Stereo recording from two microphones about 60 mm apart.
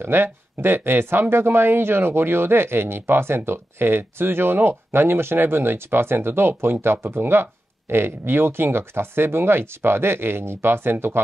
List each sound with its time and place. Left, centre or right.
0.0 s speech: right